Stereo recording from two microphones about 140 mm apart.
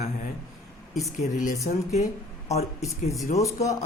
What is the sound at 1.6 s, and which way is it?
Speech, 55° left (ahead or behind).